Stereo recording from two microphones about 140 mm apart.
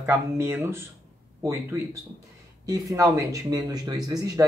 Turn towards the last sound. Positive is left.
turn(degrees=-25)  # may be behind; listen again after turning